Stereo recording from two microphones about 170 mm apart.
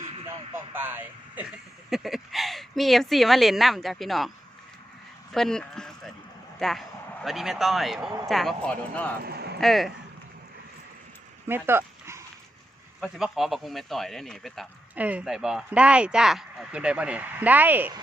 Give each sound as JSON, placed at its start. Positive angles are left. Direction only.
{"t": 0.5, "sound": "speech", "side_deg": -10}
{"t": 1.9, "sound": "speech", "side_deg": 0}
{"t": 5.3, "sound": "a man's voice", "side_deg": 5}
{"t": 9.2, "sound": "a sound", "side_deg": -70}
{"t": 9.6, "sound": "speech", "side_deg": 0}
{"t": 11.4, "sound": "dog", "side_deg": -15}
{"t": 13.0, "sound": "speech", "side_deg": 0}
{"t": 14.9, "sound": "speech", "side_deg": -10}